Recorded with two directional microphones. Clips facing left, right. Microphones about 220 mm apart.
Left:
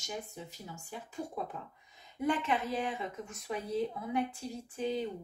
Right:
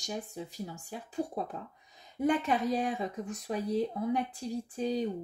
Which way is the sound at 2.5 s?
35° right (ahead or behind).